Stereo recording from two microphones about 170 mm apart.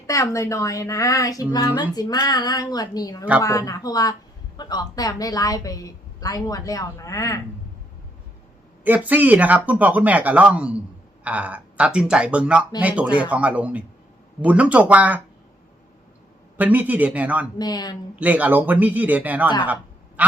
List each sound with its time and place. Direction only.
0.1 s speech: 20° left (ahead or behind)
8.8 s speech: 10° right (ahead or behind)
16.6 s speech: 10° right (ahead or behind)
17.6 s speech: 25° left (ahead or behind)
18.2 s speech: 10° right (ahead or behind)
19.6 s a sound: 10° right (ahead or behind)